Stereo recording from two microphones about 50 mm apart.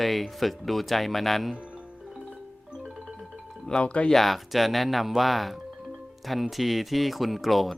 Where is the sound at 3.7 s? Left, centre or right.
Left.